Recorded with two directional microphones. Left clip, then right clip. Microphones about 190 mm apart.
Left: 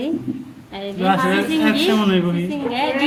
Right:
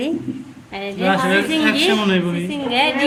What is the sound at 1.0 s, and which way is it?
Speech, 40° left (ahead or behind).